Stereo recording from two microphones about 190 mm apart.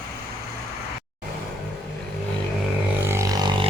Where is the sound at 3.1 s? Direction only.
15° right (ahead or behind).